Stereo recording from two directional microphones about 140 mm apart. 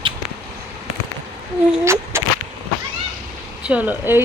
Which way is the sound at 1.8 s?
20° right (ahead or behind).